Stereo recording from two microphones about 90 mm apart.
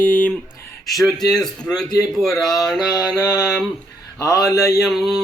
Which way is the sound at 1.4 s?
5° left (ahead or behind).